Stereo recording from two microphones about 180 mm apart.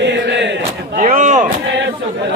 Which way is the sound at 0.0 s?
75° right (ahead or behind).